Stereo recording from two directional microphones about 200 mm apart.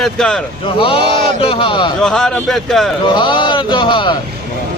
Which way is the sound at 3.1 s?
25° left (ahead or behind).